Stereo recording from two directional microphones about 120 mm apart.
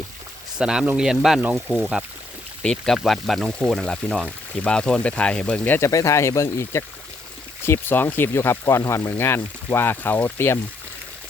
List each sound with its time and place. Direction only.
0.6 s speech: 5° right (ahead or behind); by 5.9 s 15° left (ahead or behind)
5.9 s speech: 30° left (ahead or behind)